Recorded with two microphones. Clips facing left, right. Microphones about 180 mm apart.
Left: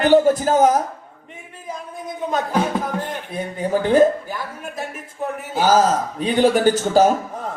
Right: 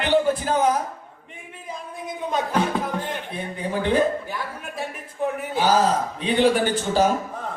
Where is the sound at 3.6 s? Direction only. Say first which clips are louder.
Left 5 dB; 45° left (ahead or behind).